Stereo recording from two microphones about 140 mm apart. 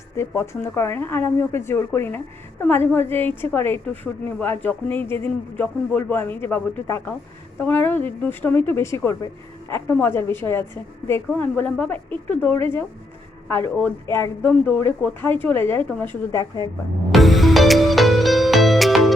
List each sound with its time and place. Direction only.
0.2 s speech: 20° left (ahead or behind)
17.1 s music: centre (ahead or behind)